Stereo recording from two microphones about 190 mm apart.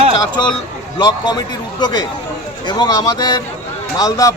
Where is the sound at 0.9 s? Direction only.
20° left (ahead or behind).